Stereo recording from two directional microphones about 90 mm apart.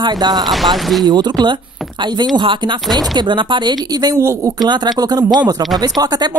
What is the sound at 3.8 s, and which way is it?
Speech, 45° right (ahead or behind).